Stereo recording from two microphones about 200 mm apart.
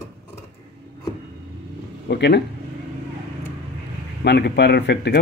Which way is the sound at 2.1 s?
55° left (ahead or behind).